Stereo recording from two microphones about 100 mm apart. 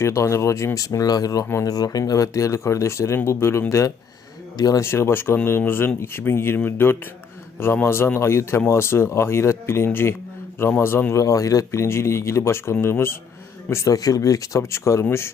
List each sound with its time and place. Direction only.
0.0 s speech: 30° left (ahead or behind)
4.8 s speech: 25° left (ahead or behind)